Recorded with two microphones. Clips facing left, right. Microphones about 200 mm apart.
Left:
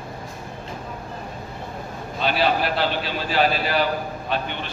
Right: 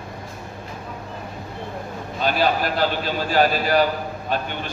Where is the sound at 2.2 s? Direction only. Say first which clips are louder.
Right 1 dB; 45° right (ahead or behind).